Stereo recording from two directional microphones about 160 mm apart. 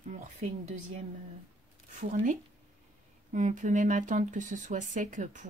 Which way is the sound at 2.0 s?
55° right (ahead or behind).